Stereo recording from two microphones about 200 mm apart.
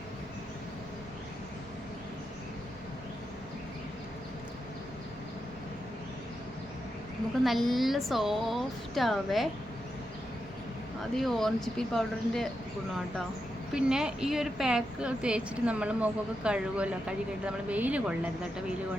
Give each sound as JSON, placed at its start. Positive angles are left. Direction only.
{"t": 7.4, "sound": "a woman's voice", "side_deg": 0}
{"t": 11.2, "sound": "a woman's voice", "side_deg": 0}
{"t": 13.7, "sound": "a woman's voice", "side_deg": -5}